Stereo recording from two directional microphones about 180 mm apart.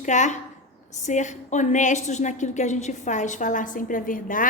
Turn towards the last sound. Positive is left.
turn(degrees=50)  # may be behind; listen again after turning